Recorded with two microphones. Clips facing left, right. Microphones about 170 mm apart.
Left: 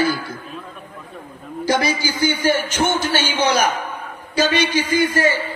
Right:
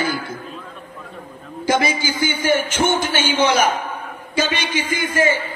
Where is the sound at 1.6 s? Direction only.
50° right (ahead or behind).